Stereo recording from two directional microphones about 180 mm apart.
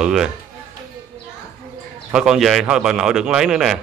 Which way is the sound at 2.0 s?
5° right (ahead or behind).